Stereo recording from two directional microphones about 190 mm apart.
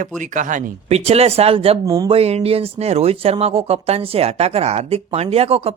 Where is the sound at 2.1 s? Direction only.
35° right (ahead or behind).